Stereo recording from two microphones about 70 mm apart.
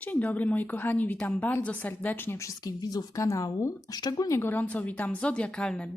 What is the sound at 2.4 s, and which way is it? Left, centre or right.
Speech, left.